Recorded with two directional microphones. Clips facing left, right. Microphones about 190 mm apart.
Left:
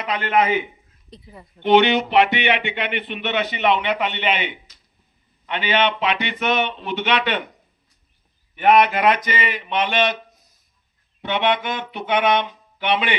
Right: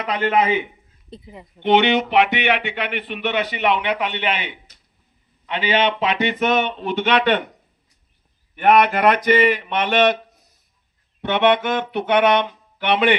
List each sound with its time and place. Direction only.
1.1 s speech: 20° right (ahead or behind)
5.7 s speech: 35° right (ahead or behind)
8.6 s speech: 60° right (ahead or behind)
11.2 s speech: 60° right (ahead or behind)